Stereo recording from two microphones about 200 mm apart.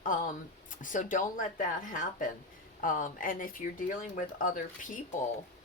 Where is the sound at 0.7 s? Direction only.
40° left (ahead or behind).